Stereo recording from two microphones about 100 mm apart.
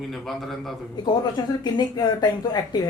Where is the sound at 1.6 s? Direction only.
45° left (ahead or behind).